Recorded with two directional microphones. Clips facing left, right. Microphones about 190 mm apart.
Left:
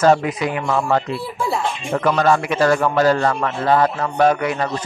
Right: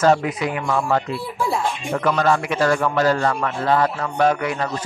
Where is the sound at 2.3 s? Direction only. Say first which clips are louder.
Left 3 dB; 40° left (ahead or behind).